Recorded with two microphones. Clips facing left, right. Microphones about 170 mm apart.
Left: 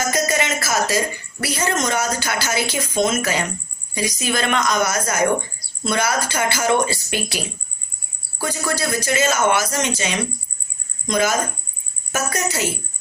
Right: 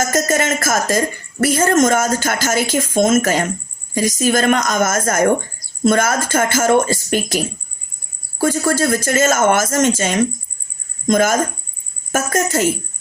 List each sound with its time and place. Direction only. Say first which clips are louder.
0.0 s a woman's voice: right 4 dB; 45° right (ahead or behind)